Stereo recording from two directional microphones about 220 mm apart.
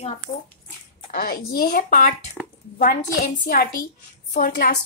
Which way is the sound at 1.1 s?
40° left (ahead or behind).